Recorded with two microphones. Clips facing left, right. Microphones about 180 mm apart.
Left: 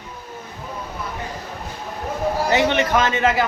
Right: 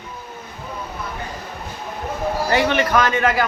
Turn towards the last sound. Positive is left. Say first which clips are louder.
# even
turn(degrees=25)  # may be behind; listen again after turning